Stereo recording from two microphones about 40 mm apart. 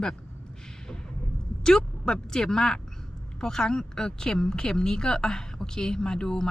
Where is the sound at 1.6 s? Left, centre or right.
Centre.